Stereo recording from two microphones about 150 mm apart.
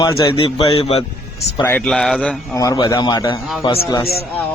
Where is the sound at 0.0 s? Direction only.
30° left (ahead or behind).